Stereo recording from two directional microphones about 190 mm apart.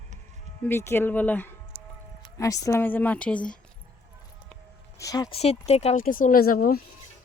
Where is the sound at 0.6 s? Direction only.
15° left (ahead or behind).